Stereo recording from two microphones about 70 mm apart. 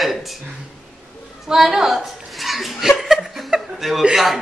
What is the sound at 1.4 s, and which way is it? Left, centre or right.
Chuckle, centre.